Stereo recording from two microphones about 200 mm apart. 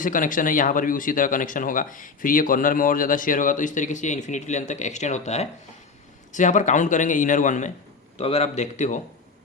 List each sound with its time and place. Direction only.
0.0 s speech: 40° left (ahead or behind)